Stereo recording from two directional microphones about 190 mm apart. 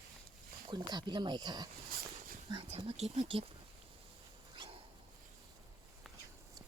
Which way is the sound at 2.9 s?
30° right (ahead or behind).